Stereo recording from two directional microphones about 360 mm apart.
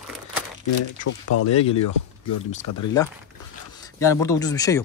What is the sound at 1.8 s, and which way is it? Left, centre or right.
Speech, left.